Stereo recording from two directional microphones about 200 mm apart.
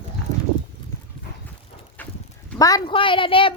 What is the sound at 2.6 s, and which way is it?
Speech, 20° left (ahead or behind).